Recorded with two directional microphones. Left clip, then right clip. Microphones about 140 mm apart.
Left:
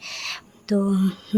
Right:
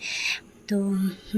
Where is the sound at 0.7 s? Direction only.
40° left (ahead or behind).